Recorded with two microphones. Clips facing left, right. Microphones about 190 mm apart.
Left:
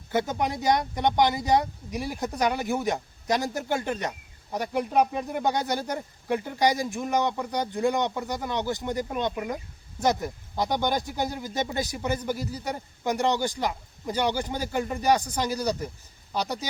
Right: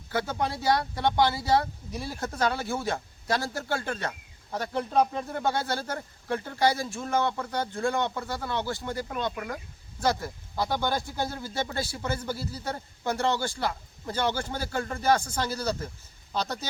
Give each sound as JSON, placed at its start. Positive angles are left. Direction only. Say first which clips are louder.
{"t": 0.1, "sound": "speech", "louder": "left 3 dB", "side_deg": 20}